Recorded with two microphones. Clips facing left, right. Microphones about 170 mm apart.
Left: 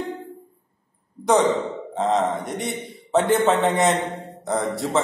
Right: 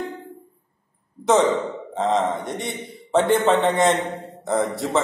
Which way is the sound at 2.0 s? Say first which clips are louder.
Even; centre (ahead or behind).